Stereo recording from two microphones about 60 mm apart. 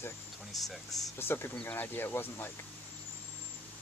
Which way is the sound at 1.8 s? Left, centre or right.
Left.